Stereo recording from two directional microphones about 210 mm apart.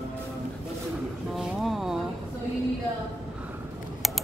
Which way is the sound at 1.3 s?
Centre (ahead or behind).